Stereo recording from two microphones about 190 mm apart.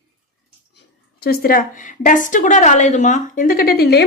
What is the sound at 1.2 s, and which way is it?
A woman's voice, 55° left (ahead or behind).